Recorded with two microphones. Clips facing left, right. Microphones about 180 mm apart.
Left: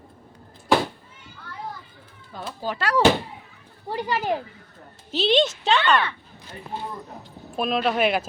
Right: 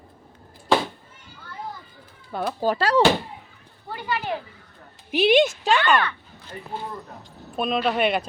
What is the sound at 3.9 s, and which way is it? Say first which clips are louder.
Speech: left 3 dB; 40° left (ahead or behind).